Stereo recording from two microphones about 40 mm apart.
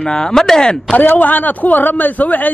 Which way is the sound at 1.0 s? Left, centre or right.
Left.